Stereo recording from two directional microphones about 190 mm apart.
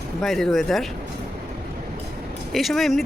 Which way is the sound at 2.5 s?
Centre (ahead or behind).